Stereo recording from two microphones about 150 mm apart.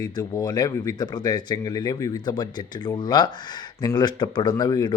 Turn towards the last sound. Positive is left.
turn(degrees=25)  # may be behind; listen again after turning